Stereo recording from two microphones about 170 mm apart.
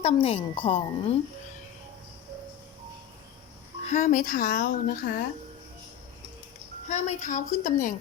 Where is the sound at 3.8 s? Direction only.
45° left (ahead or behind).